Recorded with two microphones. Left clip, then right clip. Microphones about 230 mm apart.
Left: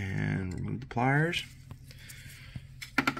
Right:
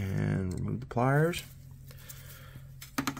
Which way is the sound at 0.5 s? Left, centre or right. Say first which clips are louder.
Right 1 dB; right.